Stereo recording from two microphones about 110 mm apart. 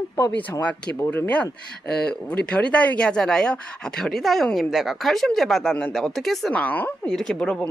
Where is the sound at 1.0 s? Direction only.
20° left (ahead or behind).